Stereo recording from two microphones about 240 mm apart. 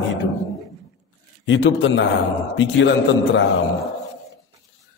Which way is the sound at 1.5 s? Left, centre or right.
Left.